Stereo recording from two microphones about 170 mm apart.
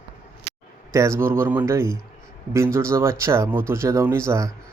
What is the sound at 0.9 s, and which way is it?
Speech, 15° right (ahead or behind).